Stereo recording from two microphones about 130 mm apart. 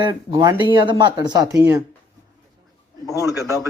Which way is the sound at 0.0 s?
35° right (ahead or behind).